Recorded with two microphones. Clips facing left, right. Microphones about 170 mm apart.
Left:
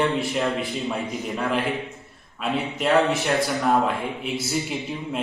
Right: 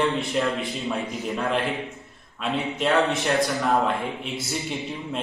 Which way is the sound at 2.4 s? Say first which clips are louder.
Even; 5° left (ahead or behind).